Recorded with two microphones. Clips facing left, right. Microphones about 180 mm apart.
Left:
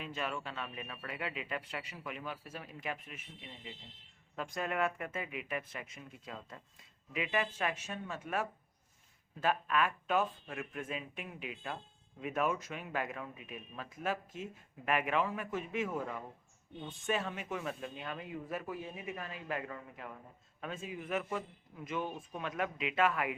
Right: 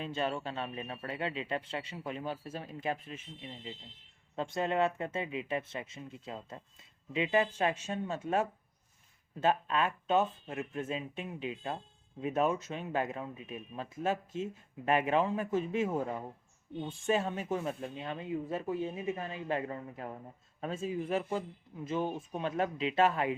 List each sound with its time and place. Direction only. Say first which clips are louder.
0.0 s speech: right 5 dB; 30° right (ahead or behind)